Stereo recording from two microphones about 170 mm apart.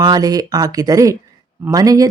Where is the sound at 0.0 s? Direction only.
25° right (ahead or behind).